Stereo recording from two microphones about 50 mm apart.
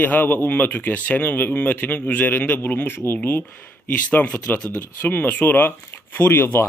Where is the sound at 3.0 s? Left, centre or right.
Left.